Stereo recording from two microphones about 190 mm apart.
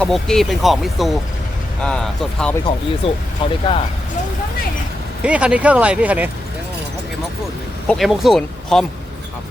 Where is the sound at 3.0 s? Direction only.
30° left (ahead or behind).